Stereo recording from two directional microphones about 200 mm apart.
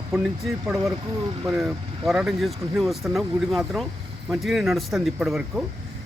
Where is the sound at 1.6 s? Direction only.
Centre (ahead or behind).